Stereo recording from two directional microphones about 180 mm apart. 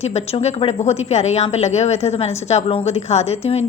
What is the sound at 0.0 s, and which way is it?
Speech, 35° left (ahead or behind).